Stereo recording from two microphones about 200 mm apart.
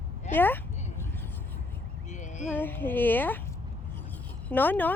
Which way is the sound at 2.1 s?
35° left (ahead or behind).